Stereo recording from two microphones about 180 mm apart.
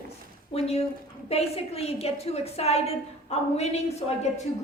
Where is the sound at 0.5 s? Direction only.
35° left (ahead or behind).